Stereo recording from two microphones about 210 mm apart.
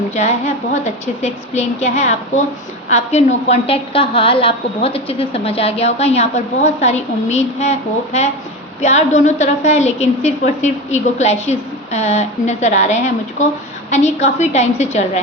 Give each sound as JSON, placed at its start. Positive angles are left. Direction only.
{"t": 0.1, "sound": "a woman's voice", "side_deg": 30}